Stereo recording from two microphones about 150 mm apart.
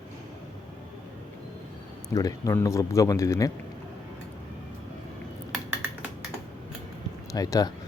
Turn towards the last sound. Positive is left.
turn(degrees=25)  # may be behind; listen again after turning